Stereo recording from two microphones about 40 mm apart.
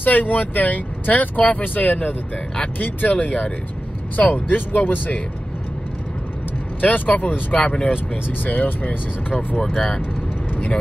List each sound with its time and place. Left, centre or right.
0.0 s speech: left
6.8 s speech: left
7.5 s speech: left
8.5 s speech: left
9.8 s speech: left